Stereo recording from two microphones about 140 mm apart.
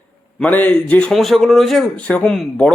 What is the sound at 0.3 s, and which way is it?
A man's voice, 10° left (ahead or behind).